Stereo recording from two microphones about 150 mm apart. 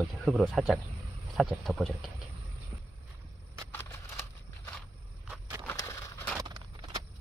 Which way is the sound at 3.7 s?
15° left (ahead or behind).